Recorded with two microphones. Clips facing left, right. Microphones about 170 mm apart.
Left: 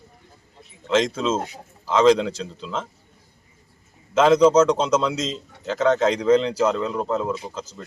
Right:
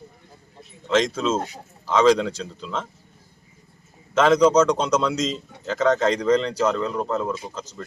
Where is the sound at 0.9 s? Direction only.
5° left (ahead or behind).